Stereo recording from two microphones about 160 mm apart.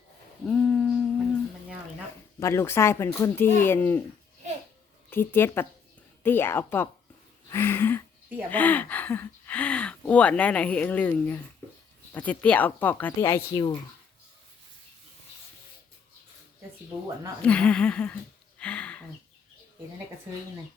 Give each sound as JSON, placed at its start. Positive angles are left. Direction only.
{"t": 0.4, "sound": "humming", "side_deg": 5}
{"t": 2.4, "sound": "speech", "side_deg": 15}
{"t": 5.1, "sound": "speech", "side_deg": 15}
{"t": 13.2, "sound": "speech", "side_deg": 20}
{"t": 17.4, "sound": "speech", "side_deg": 10}
{"t": 18.6, "sound": "a sound", "side_deg": 5}